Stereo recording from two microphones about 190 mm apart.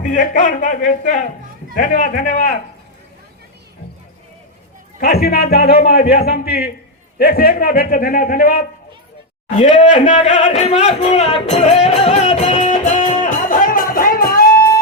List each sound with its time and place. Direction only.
0.0 s a man's voice: 40° left (ahead or behind)
4.9 s a man's voice: 55° left (ahead or behind)
9.6 s music: 35° left (ahead or behind); by 14.8 s 50° left (ahead or behind)